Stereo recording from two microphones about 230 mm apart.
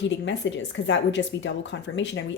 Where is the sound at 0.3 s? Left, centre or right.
Left.